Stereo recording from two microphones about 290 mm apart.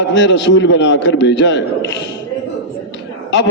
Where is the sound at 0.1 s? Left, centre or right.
Left.